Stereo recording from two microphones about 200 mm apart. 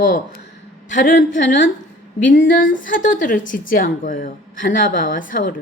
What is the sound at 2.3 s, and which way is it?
Speech, 40° left (ahead or behind).